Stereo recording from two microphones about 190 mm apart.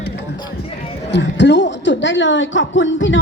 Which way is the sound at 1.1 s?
65° left (ahead or behind).